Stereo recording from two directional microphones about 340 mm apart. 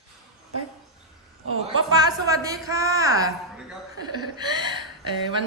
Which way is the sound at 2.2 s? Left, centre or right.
Centre.